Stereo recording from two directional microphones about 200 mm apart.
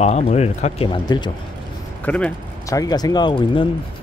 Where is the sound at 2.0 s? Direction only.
5° left (ahead or behind).